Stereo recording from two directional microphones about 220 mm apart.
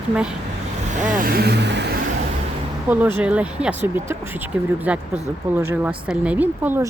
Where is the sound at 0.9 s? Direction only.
40° right (ahead or behind).